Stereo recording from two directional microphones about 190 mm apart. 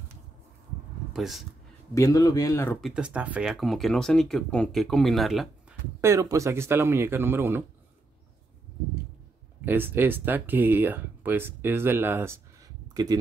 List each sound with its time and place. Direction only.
1.1 s speech: centre (ahead or behind)
2.0 s speech: 15° left (ahead or behind)
2.8 s speech: 5° right (ahead or behind)
5.9 s speech: 15° right (ahead or behind)
9.7 s speech: 10° right (ahead or behind)